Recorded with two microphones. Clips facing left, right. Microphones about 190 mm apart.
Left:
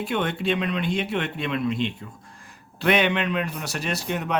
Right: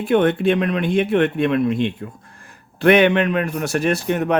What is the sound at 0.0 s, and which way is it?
A man's voice, 50° right (ahead or behind).